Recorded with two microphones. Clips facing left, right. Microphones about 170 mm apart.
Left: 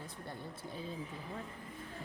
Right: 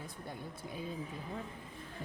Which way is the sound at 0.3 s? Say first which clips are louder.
Right 1 dB; 15° right (ahead or behind).